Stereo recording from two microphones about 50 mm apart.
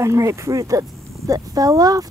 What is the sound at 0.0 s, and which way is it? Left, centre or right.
Speech, right.